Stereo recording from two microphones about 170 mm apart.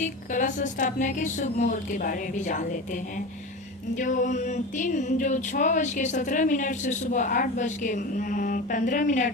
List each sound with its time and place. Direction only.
0.0 s music: 50° left (ahead or behind)